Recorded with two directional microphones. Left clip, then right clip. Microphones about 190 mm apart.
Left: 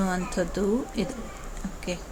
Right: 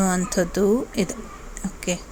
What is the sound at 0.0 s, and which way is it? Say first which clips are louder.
Speech: right 5 dB; 35° right (ahead or behind).